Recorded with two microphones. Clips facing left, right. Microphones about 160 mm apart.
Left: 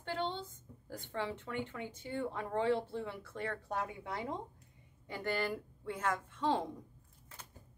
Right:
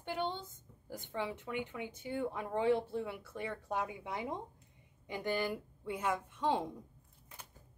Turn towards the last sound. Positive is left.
turn(degrees=-10)  # may be behind; listen again after turning